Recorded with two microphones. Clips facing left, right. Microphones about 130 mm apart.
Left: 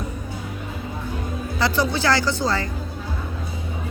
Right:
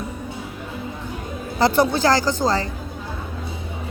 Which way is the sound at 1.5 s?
50° right (ahead or behind).